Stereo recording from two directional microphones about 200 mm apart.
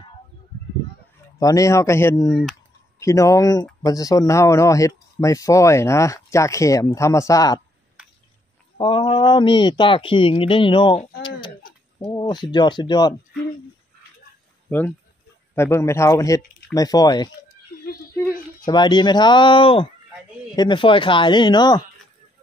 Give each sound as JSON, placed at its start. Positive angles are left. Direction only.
{"t": 1.4, "sound": "speech", "side_deg": 15}
{"t": 8.7, "sound": "speech", "side_deg": 25}
{"t": 11.2, "sound": "a sound", "side_deg": 25}
{"t": 14.7, "sound": "speech", "side_deg": 10}
{"t": 18.7, "sound": "speech", "side_deg": 20}